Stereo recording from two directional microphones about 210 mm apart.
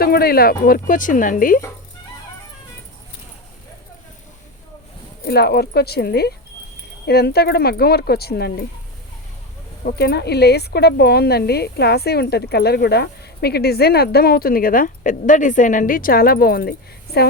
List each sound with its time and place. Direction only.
0.0 s speech: 45° left (ahead or behind)
5.2 s speech: 50° left (ahead or behind)
9.8 s speech: 50° left (ahead or behind)